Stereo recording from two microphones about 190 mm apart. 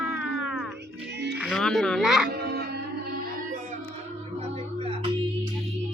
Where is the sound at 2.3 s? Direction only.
60° right (ahead or behind).